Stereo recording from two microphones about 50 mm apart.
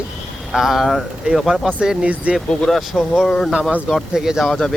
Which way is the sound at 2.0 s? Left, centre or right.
Right.